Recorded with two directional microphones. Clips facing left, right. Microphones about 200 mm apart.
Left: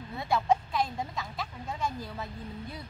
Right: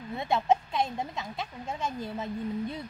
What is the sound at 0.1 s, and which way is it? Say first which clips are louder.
Speech: right 1 dB; 20° right (ahead or behind).